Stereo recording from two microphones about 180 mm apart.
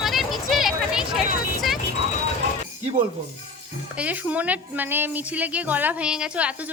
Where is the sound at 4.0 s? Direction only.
5° right (ahead or behind).